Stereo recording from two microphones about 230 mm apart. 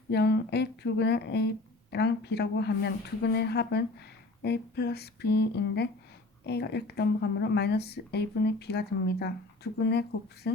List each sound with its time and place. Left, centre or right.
0.1 s speech: left